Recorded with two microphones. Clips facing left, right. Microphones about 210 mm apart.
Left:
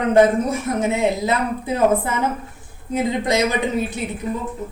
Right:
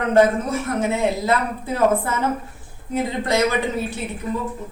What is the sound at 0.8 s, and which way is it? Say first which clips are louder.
A woman's voice: left 2 dB; 15° left (ahead or behind).